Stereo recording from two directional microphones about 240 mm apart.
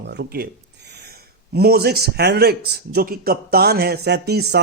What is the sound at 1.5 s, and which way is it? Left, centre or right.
A man's voice, right.